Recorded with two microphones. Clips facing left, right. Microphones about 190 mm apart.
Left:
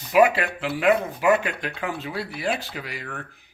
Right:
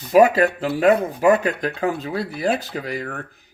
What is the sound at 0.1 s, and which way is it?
Speech, 40° right (ahead or behind).